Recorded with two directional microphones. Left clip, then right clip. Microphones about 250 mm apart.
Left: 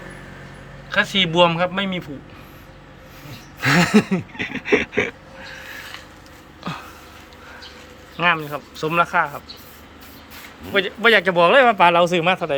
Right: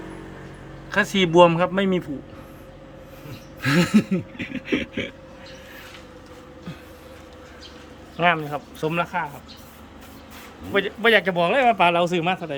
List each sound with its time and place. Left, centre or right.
0.9 s speech: centre
3.6 s speech: centre
8.1 s speech: centre
10.7 s speech: centre